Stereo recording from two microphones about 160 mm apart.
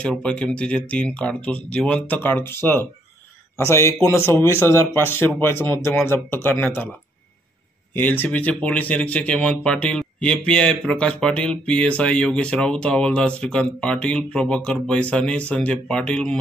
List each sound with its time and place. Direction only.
0.2 s speech: 5° left (ahead or behind)
7.9 s speech: 10° left (ahead or behind)